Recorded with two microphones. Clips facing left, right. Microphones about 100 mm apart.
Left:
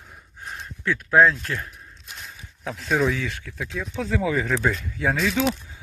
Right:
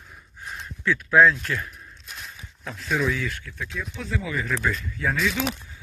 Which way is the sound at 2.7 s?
65° left (ahead or behind).